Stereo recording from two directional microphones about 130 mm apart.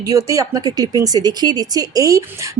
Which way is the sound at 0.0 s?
25° right (ahead or behind).